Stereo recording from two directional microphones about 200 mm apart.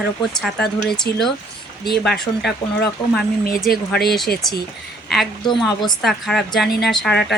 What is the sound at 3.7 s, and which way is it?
Speech, 50° left (ahead or behind).